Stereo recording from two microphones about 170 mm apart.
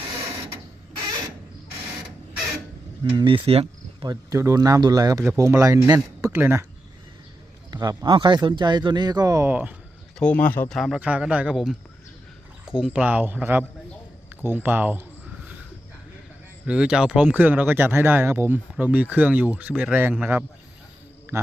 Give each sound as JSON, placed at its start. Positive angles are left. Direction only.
{"t": 3.0, "sound": "speech", "side_deg": -25}
{"t": 4.0, "sound": "speech", "side_deg": -20}
{"t": 7.7, "sound": "speech", "side_deg": -25}
{"t": 10.2, "sound": "speech", "side_deg": 10}
{"t": 10.8, "sound": "speech", "side_deg": 0}
{"t": 16.6, "sound": "speech", "side_deg": -5}